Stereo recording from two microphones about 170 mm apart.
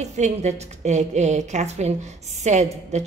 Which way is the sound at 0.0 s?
40° right (ahead or behind).